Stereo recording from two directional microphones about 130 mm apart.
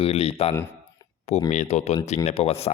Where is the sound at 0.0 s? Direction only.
50° left (ahead or behind).